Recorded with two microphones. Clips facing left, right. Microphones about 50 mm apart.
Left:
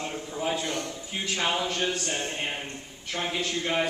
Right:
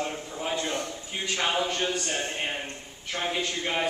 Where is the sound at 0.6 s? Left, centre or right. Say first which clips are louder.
Right 1 dB; right.